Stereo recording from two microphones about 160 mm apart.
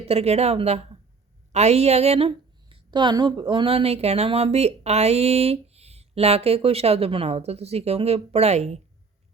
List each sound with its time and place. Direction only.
0.0 s a woman's voice: 40° right (ahead or behind)